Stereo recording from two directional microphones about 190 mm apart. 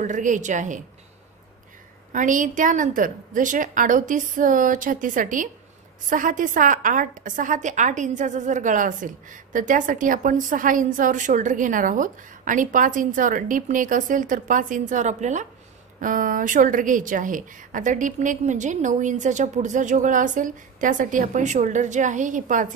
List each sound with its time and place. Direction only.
0.0 s a woman's voice: 40° right (ahead or behind)
2.1 s a woman's voice: 45° right (ahead or behind)